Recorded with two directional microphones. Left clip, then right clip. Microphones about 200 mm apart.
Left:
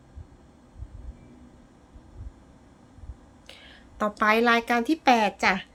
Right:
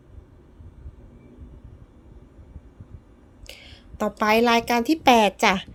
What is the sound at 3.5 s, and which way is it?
A woman's voice, 20° right (ahead or behind).